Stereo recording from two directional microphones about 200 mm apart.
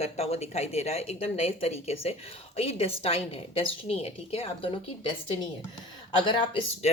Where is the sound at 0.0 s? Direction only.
30° left (ahead or behind).